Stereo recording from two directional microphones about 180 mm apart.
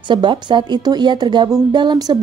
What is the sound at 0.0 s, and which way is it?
A woman's voice, 25° right (ahead or behind).